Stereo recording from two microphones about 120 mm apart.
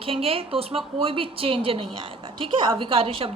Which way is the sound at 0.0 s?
50° right (ahead or behind).